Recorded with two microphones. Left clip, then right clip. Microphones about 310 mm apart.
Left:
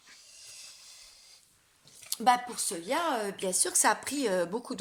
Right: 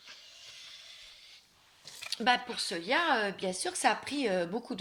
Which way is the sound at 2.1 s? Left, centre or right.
Left.